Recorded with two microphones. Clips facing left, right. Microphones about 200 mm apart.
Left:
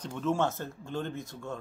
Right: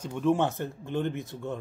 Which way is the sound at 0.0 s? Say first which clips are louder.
Right 4 dB; 15° right (ahead or behind).